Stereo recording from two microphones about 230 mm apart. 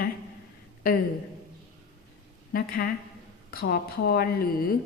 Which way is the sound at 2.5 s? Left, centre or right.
Left.